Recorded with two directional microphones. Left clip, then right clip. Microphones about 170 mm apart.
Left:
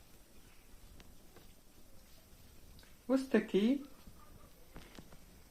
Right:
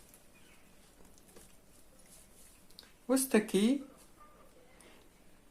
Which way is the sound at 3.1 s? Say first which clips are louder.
Right 2 dB; 20° right (ahead or behind).